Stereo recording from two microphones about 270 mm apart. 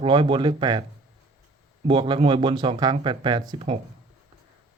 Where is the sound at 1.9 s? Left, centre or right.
Centre.